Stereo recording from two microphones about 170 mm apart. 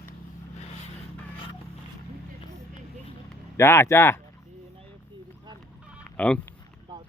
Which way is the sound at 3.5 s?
15° left (ahead or behind).